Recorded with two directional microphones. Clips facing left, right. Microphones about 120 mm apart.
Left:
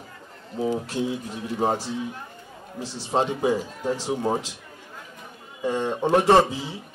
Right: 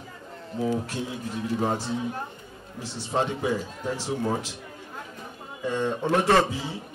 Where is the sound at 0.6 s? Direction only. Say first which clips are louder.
Left 1 dB; 20° left (ahead or behind).